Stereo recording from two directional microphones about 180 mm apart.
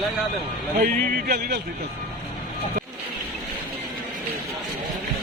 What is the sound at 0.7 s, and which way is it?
Speech, 60° right (ahead or behind).